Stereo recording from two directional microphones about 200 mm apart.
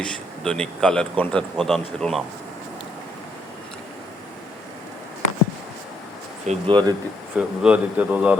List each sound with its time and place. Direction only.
0.0 s speech: 5° left (ahead or behind)
6.4 s speech: 30° right (ahead or behind)
7.3 s speech: 5° right (ahead or behind)